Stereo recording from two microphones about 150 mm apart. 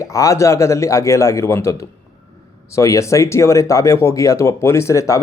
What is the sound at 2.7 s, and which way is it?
Speech, 20° left (ahead or behind).